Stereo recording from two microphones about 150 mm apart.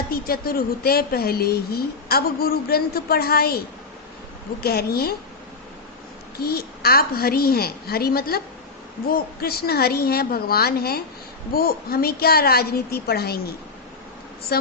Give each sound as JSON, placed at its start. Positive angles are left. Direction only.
{"t": 0.1, "sound": "a woman's voice", "side_deg": 85}
{"t": 4.6, "sound": "a woman's voice", "side_deg": 90}
{"t": 6.4, "sound": "a woman's voice", "side_deg": 90}